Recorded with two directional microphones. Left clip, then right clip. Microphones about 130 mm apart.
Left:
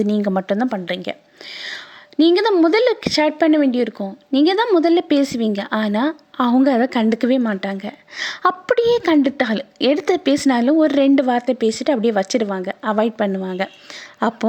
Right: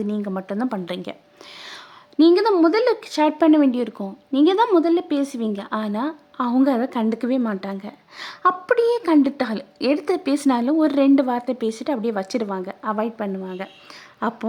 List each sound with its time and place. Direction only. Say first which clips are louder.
0.0 s a woman's voice: left 8 dB; 30° left (ahead or behind)
0.7 s speech: left 5 dB; 5° left (ahead or behind)
1.5 s a sound: left 8 dB; 10° left (ahead or behind)
2.6 s a woman's voice: left 3 dB; 25° left (ahead or behind)
3.3 s speech: left 1 dB; 5° left (ahead or behind)
4.3 s a woman's voice: left 1 dB; 20° left (ahead or behind)
8.4 s a woman's voice: left 1 dB; 30° left (ahead or behind)